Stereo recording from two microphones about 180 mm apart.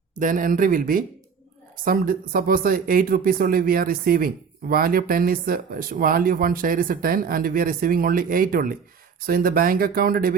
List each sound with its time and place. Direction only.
0.1 s speech: 45° right (ahead or behind)